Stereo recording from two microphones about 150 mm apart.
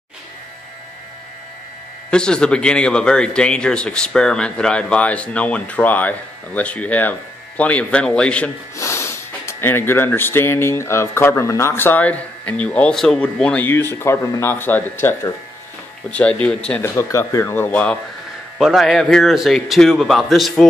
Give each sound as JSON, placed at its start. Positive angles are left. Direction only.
{"t": 2.0, "sound": "speech", "side_deg": 5}
{"t": 8.7, "sound": "speech", "side_deg": 20}
{"t": 18.6, "sound": "a man's voice", "side_deg": 0}